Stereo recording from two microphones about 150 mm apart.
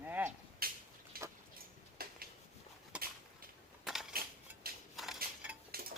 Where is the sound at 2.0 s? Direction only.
90° right.